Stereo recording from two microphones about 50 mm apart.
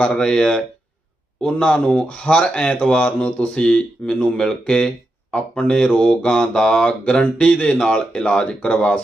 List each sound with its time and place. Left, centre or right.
0.0 s mantra: centre
1.4 s speech: centre
4.4 s mantra: centre
5.9 s speech: left
6.2 s mantra: centre
7.1 s speech: centre